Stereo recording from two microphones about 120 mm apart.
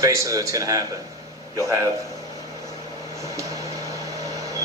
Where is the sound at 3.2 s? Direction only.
25° right (ahead or behind).